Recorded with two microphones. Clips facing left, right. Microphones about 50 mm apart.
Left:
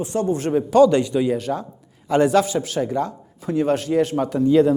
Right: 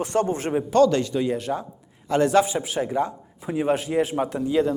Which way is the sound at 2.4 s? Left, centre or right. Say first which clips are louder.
Left 3 dB; centre.